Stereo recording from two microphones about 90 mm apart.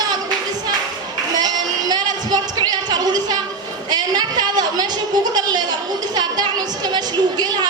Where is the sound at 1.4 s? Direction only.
50° right (ahead or behind).